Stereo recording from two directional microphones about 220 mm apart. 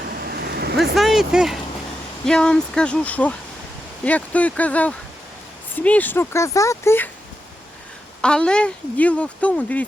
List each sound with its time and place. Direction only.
0.1 s vehicle: 40° right (ahead or behind)
0.9 s speech: centre (ahead or behind)
8.2 s speech: 5° left (ahead or behind)